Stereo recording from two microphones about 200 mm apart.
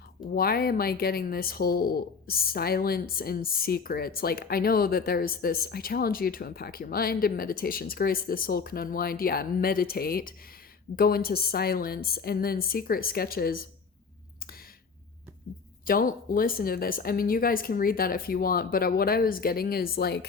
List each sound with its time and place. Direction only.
0.3 s speech: 50° left (ahead or behind)
15.9 s speech: 45° left (ahead or behind)